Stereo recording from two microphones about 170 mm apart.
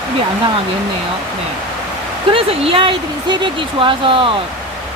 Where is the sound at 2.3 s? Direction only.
30° right (ahead or behind).